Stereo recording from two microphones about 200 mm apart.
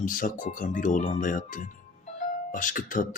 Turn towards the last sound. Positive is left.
turn(degrees=40)  # may be behind; listen again after turning